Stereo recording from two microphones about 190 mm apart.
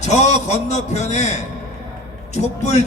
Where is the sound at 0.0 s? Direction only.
35° left (ahead or behind).